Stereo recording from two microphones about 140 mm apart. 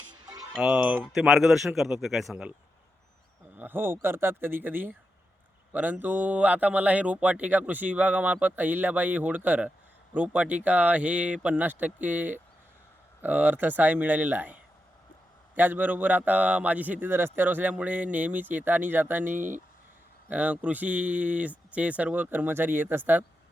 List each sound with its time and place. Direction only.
0.5 s speech: centre (ahead or behind)
0.8 s speech: 15° right (ahead or behind)
1.0 s speech: centre (ahead or behind)
3.6 s speech: 15° right (ahead or behind)
19.3 s speech: 65° right (ahead or behind)
20.2 s speech: 10° right (ahead or behind)